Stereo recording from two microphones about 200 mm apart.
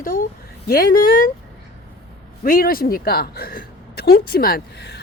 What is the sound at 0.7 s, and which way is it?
Speech, 45° left (ahead or behind).